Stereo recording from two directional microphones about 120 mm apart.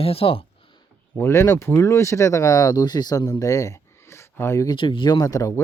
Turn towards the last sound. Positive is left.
turn(degrees=30)  # may be behind; listen again after turning